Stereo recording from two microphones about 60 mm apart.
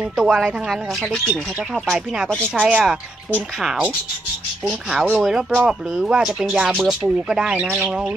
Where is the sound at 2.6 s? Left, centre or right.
Right.